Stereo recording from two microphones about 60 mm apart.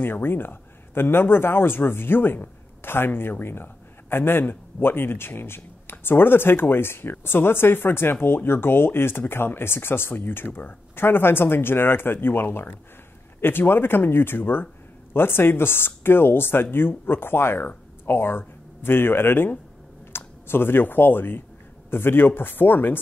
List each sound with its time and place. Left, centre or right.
0.0 s speech: left